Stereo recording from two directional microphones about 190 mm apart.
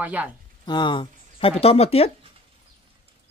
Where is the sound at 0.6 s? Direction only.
25° left (ahead or behind).